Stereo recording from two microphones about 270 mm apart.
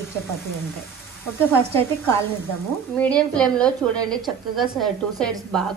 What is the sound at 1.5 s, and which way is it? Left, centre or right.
A woman's voice, centre.